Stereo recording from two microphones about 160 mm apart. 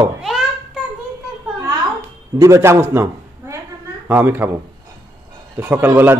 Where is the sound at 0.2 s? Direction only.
Centre (ahead or behind).